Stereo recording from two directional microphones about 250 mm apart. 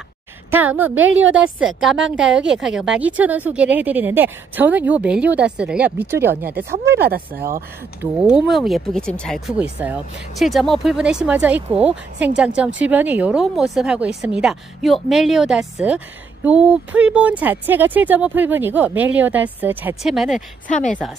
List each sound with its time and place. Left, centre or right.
0.5 s speech: centre
7.0 s speech: right
8.0 s speech: centre